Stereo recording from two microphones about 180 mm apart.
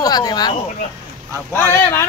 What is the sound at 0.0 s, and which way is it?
A man's voice, 20° left (ahead or behind).